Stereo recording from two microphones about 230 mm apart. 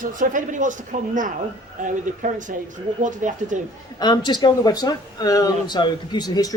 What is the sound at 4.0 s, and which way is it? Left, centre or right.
Speech, centre.